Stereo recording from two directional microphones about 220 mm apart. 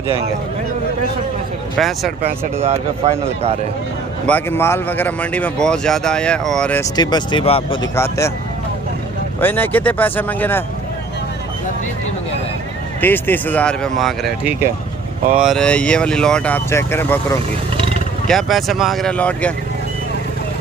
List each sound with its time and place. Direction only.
1.8 s speech: centre (ahead or behind)
3.0 s a man's voice: 30° right (ahead or behind)
4.3 s speech: 10° left (ahead or behind); by 7.9 s 25° left (ahead or behind)
7.9 s speech: 15° left (ahead or behind)
9.4 s speech: 10° left (ahead or behind)
13.0 s speech: 10° left (ahead or behind)
17.7 s wild animals: 25° right (ahead or behind)
18.3 s speech: centre (ahead or behind)